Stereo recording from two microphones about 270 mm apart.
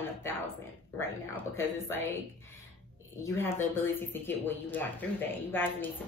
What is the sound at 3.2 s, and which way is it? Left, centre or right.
Speech, centre.